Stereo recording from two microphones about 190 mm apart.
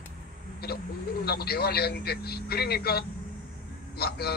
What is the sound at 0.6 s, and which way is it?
Speech, 55° left (ahead or behind).